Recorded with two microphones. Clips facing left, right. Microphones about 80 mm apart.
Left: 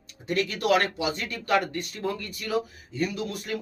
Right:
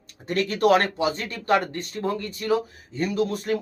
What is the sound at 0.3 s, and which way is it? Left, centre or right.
A man's voice, right.